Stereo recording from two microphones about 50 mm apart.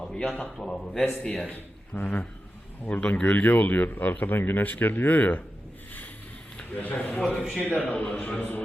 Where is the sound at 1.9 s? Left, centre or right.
Left.